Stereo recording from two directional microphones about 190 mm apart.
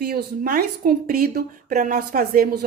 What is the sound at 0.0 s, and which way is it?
A woman's voice, 55° right (ahead or behind).